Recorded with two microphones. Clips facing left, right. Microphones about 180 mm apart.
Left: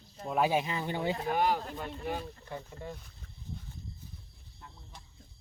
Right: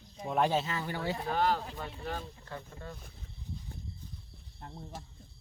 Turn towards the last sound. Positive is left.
turn(degrees=-50)  # may be behind; listen again after turning